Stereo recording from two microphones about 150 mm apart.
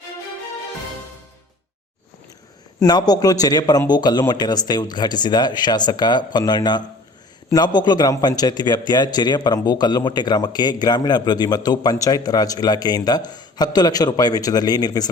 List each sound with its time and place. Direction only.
2.8 s a man's voice: 25° left (ahead or behind)